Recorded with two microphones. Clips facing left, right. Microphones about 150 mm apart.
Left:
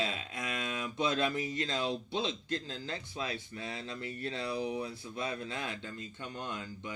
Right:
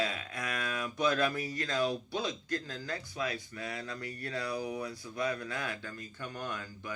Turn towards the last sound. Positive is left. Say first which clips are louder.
# right 1 dB
turn(degrees=25)  # may be behind; listen again after turning